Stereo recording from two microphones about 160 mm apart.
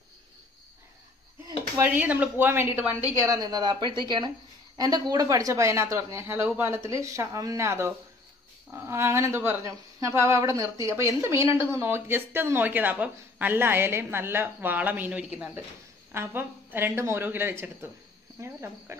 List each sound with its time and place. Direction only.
1.8 s speech: 10° right (ahead or behind)